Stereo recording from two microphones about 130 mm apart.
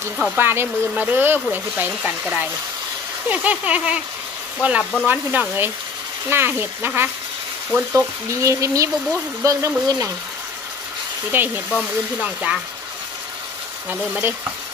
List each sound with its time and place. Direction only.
0.4 s speech: 15° right (ahead or behind)
11.3 s speech: 15° right (ahead or behind)
13.8 s speech: 15° right (ahead or behind)